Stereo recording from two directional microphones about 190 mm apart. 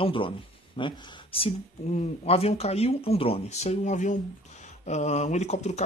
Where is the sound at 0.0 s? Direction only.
25° left (ahead or behind).